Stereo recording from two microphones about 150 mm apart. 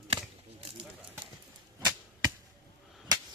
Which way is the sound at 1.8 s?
25° right (ahead or behind).